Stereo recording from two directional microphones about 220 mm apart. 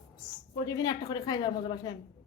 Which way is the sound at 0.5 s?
15° left (ahead or behind).